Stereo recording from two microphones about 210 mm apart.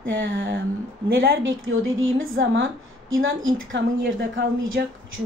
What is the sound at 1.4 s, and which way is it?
Speech, 70° right (ahead or behind).